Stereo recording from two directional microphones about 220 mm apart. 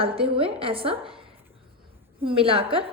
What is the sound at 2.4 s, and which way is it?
Speech, 25° right (ahead or behind).